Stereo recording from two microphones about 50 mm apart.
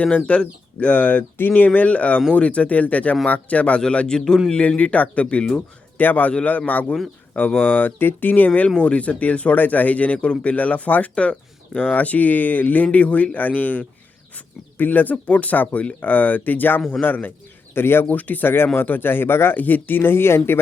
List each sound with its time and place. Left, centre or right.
0.3 s speech: left
3.8 s speech: centre
6.0 s speech: left
11.1 s speech: left
17.7 s speech: left
18.1 s speech: left